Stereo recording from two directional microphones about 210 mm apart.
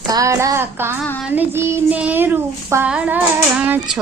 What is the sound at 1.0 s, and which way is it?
Child singing, centre (ahead or behind).